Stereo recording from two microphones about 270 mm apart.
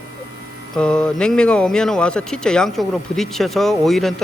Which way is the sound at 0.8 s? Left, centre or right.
Centre.